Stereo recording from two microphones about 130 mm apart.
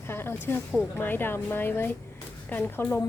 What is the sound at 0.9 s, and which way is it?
A woman's voice, 15° left (ahead or behind).